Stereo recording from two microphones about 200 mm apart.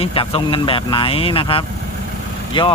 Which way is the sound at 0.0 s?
25° left (ahead or behind).